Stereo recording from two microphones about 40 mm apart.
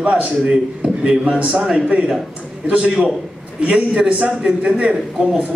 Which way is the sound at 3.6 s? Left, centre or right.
Right.